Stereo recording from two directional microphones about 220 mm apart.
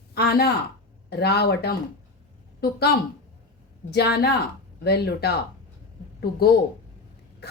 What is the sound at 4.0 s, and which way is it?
A woman's voice, 45° left (ahead or behind).